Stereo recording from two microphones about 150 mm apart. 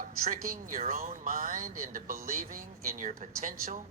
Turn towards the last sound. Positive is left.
turn(degrees=-65)  # may be behind; listen again after turning